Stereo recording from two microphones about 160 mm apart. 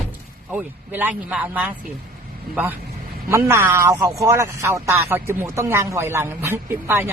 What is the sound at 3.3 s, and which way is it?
A man's voice, 15° right (ahead or behind).